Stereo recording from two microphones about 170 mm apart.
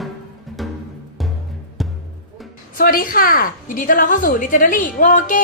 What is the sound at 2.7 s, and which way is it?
A woman's voice, 55° left (ahead or behind).